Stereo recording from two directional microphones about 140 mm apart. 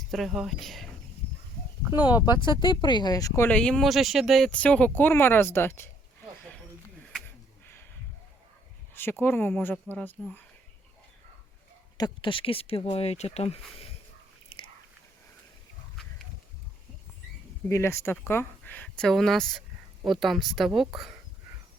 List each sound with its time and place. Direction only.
0.1 s speech: centre (ahead or behind)
1.9 s speech: 10° right (ahead or behind)
2.6 s speech: 35° left (ahead or behind)
3.5 s speech: 5° left (ahead or behind)
9.2 s speech: 15° left (ahead or behind)
11.9 s speech: 30° left (ahead or behind)
14.5 s biting: 40° left (ahead or behind)
17.7 s speech: 20° left (ahead or behind); by 21.1 s 5° right (ahead or behind)